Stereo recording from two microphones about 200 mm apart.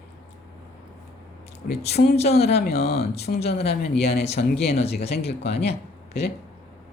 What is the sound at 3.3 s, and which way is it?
Speech, 45° left (ahead or behind).